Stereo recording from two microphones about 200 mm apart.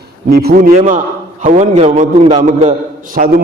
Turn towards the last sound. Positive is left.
turn(degrees=-40)  # may be behind; listen again after turning